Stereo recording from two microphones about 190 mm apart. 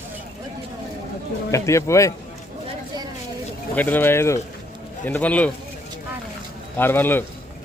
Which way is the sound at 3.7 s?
10° left (ahead or behind).